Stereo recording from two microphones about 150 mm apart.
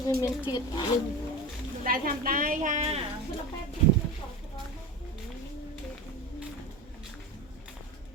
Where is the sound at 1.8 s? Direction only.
70° right (ahead or behind); by 3.0 s 50° right (ahead or behind).